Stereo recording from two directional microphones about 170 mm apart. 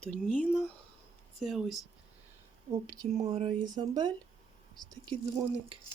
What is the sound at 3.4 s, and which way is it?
Speech, 25° right (ahead or behind).